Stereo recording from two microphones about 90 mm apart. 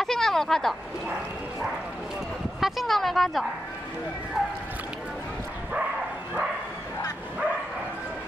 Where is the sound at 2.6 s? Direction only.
Centre (ahead or behind).